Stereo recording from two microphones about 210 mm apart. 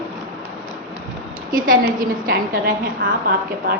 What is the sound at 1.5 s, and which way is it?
A woman's voice, 40° right (ahead or behind).